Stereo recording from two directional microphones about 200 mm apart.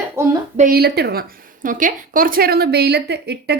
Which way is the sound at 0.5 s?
45° right (ahead or behind).